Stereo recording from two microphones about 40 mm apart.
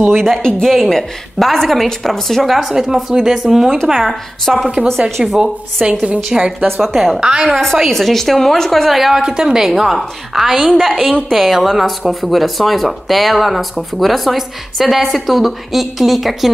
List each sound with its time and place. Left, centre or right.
0.1 s speech: centre
0.4 s a woman's voice: centre
0.7 s a woman's voice: centre
2.7 s a woman's voice: centre
6.8 s speech: centre
7.2 s a woman's voice: centre
7.7 s a woman's voice: centre
8.9 s speech: centre
9.2 s a woman's voice: centre
10.6 s a woman's voice: centre